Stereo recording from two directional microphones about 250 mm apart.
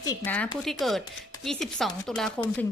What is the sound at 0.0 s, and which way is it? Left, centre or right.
A woman's voice, centre.